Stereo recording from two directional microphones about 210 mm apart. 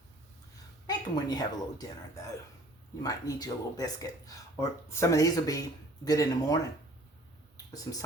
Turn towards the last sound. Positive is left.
turn(degrees=15)  # may be behind; listen again after turning